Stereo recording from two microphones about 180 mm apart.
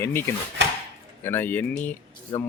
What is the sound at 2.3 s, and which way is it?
Speech, 25° left (ahead or behind).